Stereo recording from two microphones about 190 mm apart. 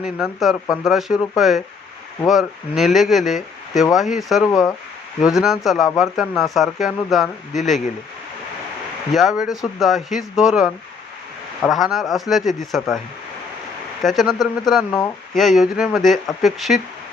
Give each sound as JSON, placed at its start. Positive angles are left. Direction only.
{"t": 0.0, "sound": "speech", "side_deg": 0}
{"t": 9.1, "sound": "speech", "side_deg": 0}
{"t": 11.7, "sound": "speech", "side_deg": 0}
{"t": 14.0, "sound": "speech", "side_deg": 0}
{"t": 14.8, "sound": "speech", "side_deg": 15}
{"t": 15.4, "sound": "speech", "side_deg": 0}